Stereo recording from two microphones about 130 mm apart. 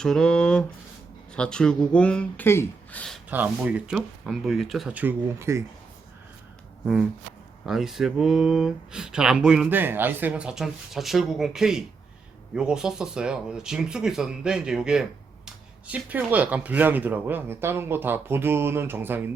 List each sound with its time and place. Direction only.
0.0 s speech: 5° left (ahead or behind)
3.2 s speech: 10° right (ahead or behind)
4.9 s speech: 15° right (ahead or behind)
6.8 s speech: 5° right (ahead or behind)